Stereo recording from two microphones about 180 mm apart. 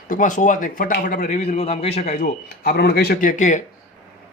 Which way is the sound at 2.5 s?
60° left (ahead or behind).